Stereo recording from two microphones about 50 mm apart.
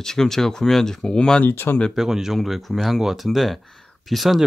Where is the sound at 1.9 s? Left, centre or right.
Centre.